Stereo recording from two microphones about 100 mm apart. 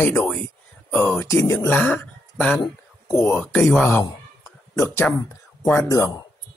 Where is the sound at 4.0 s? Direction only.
30° left (ahead or behind).